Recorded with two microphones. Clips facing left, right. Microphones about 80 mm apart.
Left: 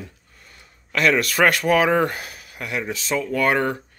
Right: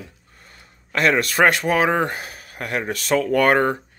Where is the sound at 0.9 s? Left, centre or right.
Right.